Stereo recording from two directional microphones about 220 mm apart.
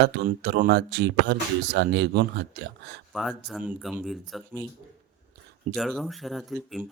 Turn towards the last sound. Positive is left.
turn(degrees=0)  # may be behind; listen again after turning